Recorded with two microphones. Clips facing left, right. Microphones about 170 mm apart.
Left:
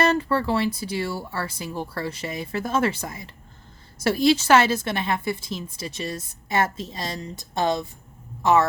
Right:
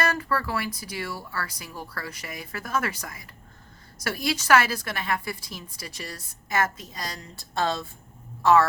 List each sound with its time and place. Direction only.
0.0 s a woman's voice: 25° left (ahead or behind)